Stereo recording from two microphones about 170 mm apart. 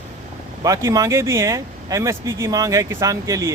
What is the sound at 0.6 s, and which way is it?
Speech, 20° right (ahead or behind).